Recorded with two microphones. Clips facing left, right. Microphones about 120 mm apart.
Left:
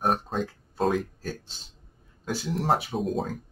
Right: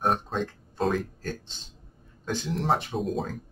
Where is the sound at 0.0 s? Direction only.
5° left (ahead or behind).